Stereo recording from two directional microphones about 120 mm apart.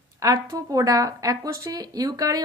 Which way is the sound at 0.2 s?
25° right (ahead or behind).